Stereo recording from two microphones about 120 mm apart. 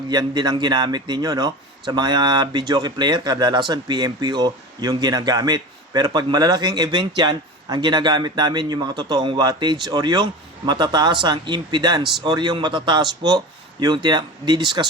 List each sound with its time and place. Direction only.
0.1 s speech: 35° right (ahead or behind)